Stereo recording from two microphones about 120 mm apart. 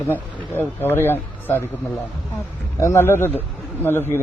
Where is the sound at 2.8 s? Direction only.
20° left (ahead or behind).